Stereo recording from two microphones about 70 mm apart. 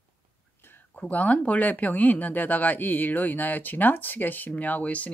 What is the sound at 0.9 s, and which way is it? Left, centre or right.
Speech, left.